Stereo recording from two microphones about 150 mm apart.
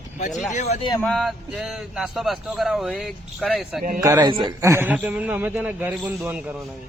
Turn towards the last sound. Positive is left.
turn(degrees=-10)  # may be behind; listen again after turning